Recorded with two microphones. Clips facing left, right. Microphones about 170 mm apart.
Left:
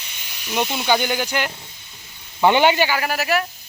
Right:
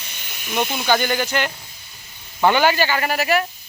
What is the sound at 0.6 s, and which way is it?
Speech, 5° right (ahead or behind).